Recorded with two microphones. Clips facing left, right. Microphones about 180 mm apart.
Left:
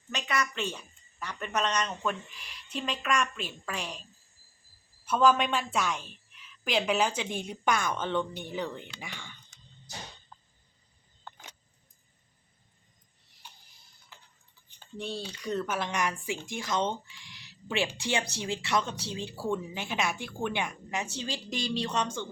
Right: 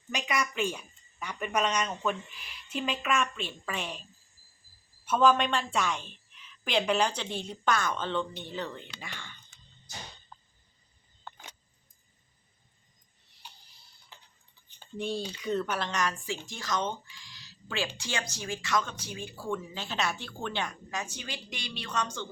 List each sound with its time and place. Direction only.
0.1 s a sound: 10° right (ahead or behind)
1.2 s speech: 10° right (ahead or behind)
5.0 s a woman's voice: centre (ahead or behind)
15.4 s speech: centre (ahead or behind); by 21.1 s 15° left (ahead or behind)
21.2 s speech: 40° left (ahead or behind)
21.8 s speech: 25° left (ahead or behind)